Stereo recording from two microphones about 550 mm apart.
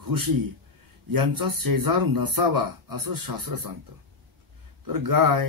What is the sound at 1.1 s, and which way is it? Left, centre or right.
Speech, right.